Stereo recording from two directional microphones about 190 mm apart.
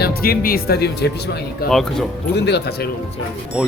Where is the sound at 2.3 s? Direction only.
60° left (ahead or behind).